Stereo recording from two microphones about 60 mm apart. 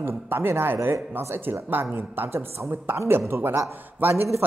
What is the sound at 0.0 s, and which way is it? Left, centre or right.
Speech, right.